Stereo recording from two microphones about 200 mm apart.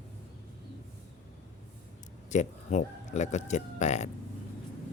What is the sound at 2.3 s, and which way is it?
Speech, 35° left (ahead or behind).